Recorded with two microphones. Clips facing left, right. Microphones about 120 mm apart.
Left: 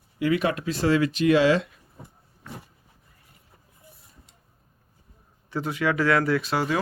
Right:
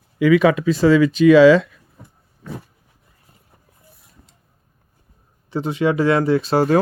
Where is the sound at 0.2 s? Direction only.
90° right.